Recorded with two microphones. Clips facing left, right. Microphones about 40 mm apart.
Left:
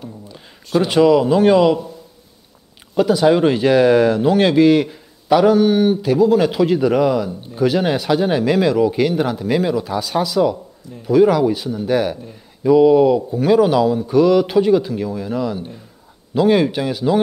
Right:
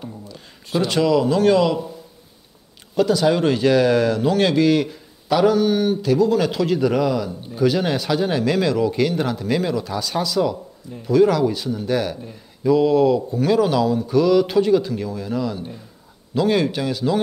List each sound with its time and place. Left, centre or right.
0.7 s speech: centre
2.9 s speech: centre